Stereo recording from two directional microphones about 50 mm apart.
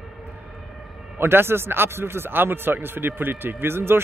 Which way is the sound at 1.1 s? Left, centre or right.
Right.